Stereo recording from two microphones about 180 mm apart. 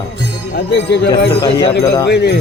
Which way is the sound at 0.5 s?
70° left (ahead or behind).